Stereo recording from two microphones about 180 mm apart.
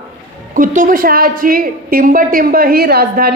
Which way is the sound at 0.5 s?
50° right (ahead or behind).